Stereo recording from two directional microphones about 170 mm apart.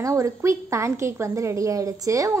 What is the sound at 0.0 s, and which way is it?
A woman's voice, 20° right (ahead or behind).